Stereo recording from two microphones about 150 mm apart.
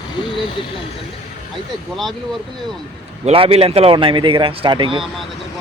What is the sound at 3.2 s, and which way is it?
Speech, 40° right (ahead or behind).